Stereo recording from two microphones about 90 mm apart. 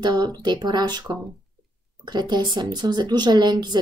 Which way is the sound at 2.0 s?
55° right (ahead or behind).